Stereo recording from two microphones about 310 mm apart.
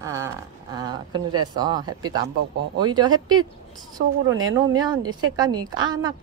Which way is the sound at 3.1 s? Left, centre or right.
Right.